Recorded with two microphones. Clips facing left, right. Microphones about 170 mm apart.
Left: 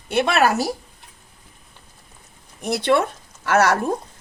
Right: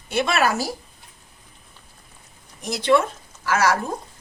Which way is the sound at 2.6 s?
60° left (ahead or behind).